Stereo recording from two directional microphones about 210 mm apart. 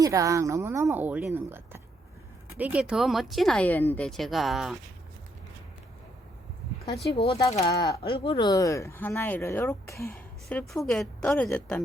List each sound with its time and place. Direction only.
0.0 s a woman's voice: 15° right (ahead or behind)
7.3 s speech: 20° left (ahead or behind)